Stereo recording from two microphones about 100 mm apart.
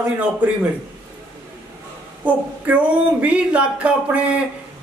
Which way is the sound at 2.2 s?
15° right (ahead or behind).